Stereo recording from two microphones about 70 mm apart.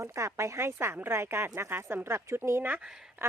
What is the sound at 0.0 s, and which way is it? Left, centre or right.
Speech, right.